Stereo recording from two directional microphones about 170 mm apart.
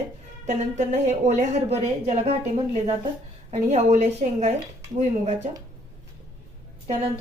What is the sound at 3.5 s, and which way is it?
A woman's voice, 45° right (ahead or behind).